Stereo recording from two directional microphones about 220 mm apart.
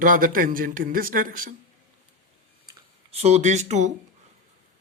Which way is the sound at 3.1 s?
30° right (ahead or behind).